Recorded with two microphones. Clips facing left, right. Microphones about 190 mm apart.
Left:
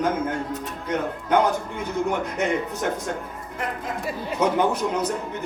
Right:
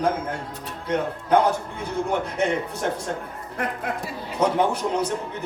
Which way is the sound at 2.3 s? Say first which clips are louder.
Even; 30° right (ahead or behind).